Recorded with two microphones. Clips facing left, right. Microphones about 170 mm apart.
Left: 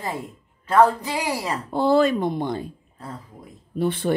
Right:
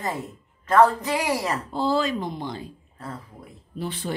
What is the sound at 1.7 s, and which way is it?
Speech, 55° left (ahead or behind).